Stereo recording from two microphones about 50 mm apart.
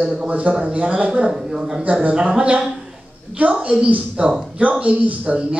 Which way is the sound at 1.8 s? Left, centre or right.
Right.